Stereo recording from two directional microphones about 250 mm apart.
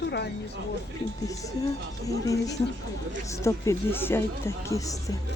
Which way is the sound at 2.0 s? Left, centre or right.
Centre.